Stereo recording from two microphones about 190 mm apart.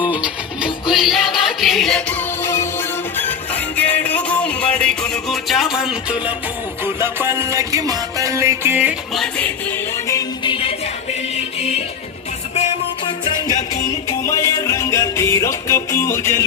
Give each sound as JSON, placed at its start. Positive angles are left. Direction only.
{"t": 0.0, "sound": "music", "side_deg": -5}
{"t": 9.2, "sound": "music", "side_deg": 10}
{"t": 13.1, "sound": "music", "side_deg": 25}